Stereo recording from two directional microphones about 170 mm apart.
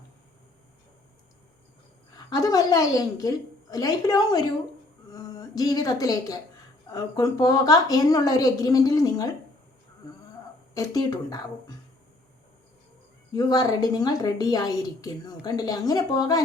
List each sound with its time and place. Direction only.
2.1 s a woman's voice: 20° left (ahead or behind)
10.8 s a woman's voice: 20° left (ahead or behind)
13.3 s a woman's voice: 20° left (ahead or behind)